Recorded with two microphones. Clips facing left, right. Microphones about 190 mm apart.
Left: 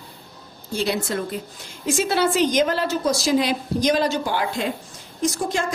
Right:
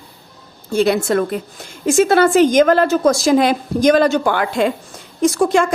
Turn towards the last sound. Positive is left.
turn(degrees=-80)